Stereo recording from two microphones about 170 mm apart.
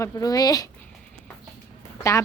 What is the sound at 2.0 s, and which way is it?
Speech, 15° left (ahead or behind).